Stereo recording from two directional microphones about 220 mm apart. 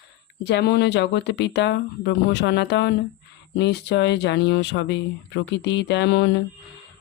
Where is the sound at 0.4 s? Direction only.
50° left (ahead or behind).